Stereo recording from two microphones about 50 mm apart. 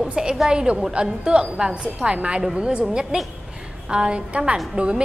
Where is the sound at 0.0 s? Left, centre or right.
Centre.